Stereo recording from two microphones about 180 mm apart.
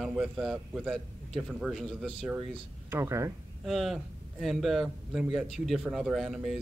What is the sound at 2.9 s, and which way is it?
Speech, 15° right (ahead or behind).